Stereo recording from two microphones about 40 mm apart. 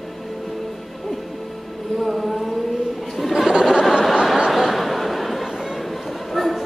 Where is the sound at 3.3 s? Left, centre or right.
Centre.